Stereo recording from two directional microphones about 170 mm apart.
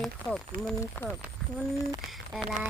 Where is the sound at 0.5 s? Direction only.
50° right (ahead or behind).